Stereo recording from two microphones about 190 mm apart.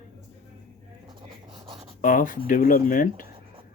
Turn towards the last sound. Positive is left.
turn(degrees=45)  # may be behind; listen again after turning